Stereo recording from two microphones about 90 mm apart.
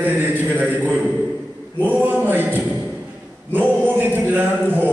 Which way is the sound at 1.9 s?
20° right (ahead or behind).